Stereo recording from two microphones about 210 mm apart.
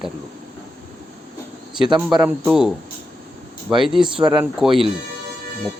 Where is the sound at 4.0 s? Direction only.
20° right (ahead or behind).